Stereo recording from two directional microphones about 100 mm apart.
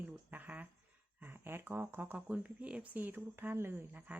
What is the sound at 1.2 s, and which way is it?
Speech, 20° right (ahead or behind).